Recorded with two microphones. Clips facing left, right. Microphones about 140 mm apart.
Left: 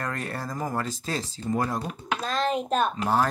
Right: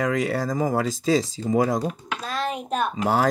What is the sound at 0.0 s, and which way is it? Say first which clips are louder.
Speech: right 9 dB; 90° right.